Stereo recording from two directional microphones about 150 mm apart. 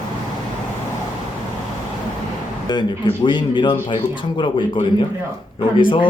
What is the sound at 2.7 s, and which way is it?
A man's voice, 30° left (ahead or behind).